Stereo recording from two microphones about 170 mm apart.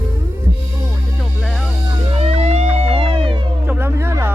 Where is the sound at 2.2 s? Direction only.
40° right (ahead or behind).